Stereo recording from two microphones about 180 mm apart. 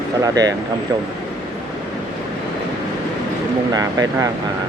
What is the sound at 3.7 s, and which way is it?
Speech, 20° right (ahead or behind).